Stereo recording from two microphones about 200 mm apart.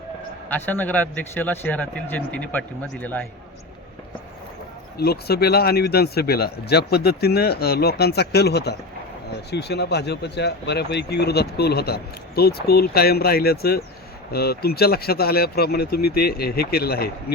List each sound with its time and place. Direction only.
0.4 s a man's voice: 10° left (ahead or behind)
4.9 s speech: 50° left (ahead or behind)